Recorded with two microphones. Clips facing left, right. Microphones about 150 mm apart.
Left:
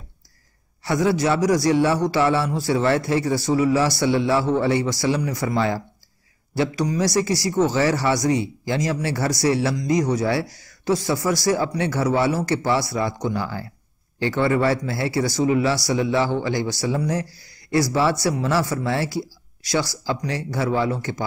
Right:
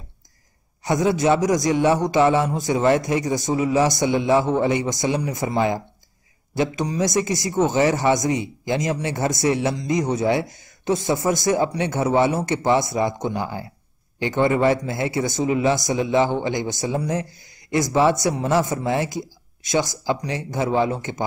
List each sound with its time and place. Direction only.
0.8 s speech: 20° right (ahead or behind)